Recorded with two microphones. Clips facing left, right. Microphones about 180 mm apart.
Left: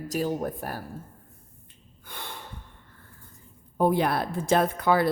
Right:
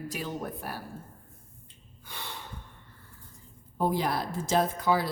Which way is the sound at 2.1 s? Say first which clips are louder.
Left 2 dB; 50° left (ahead or behind).